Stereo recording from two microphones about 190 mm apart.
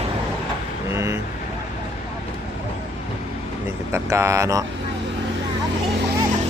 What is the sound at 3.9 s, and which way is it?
Speech, 15° right (ahead or behind).